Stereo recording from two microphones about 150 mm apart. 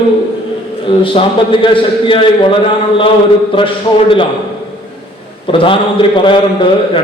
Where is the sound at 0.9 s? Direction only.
35° left (ahead or behind).